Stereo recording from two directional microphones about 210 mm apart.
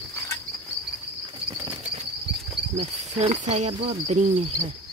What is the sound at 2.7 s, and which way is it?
Cricket, 30° right (ahead or behind).